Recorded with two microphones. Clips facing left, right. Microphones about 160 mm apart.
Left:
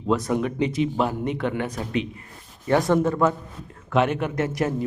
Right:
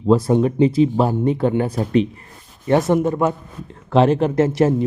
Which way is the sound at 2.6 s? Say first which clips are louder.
Right 3 dB; 20° right (ahead or behind).